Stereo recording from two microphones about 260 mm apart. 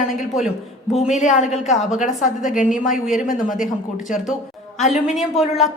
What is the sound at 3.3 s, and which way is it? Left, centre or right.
Speech, left.